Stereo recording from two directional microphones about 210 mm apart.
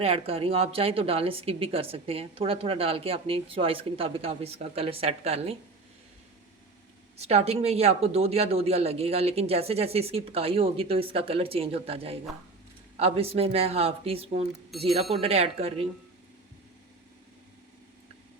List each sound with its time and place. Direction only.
0.0 s speech: 25° right (ahead or behind)
7.2 s speech: 30° right (ahead or behind)
14.7 s speech: centre (ahead or behind)
15.1 s speech: 30° right (ahead or behind)